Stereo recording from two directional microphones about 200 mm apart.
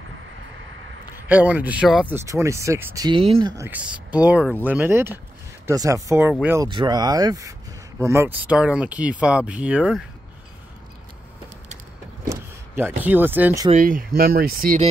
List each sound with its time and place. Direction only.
1.1 s speech: 10° right (ahead or behind); by 3.5 s 25° right (ahead or behind)
3.5 s speech: 10° right (ahead or behind)
12.3 s speech: 10° right (ahead or behind)
13.7 s speech: 40° right (ahead or behind)